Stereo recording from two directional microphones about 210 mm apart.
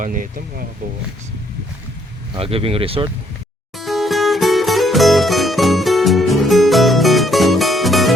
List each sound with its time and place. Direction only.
0.0 s speech: 40° right (ahead or behind)
2.3 s speech: 25° right (ahead or behind)
3.8 s music: centre (ahead or behind)